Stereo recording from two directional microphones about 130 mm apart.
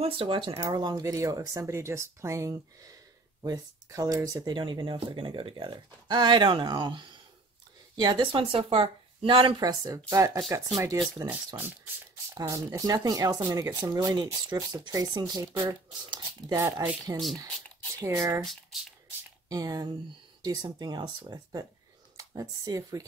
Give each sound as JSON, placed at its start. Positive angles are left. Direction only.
{"t": 0.0, "sound": "speech", "side_deg": -45}
{"t": 0.7, "sound": "speech", "side_deg": -30}
{"t": 4.6, "sound": "speech", "side_deg": -40}
{"t": 9.6, "sound": "speech", "side_deg": -30}
{"t": 11.2, "sound": "speech", "side_deg": -15}
{"t": 17.1, "sound": "speech", "side_deg": -15}
{"t": 18.4, "sound": "speech", "side_deg": 0}
{"t": 19.5, "sound": "speech", "side_deg": -30}